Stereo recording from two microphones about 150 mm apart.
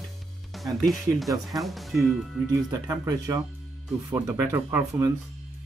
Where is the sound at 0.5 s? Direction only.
Centre (ahead or behind).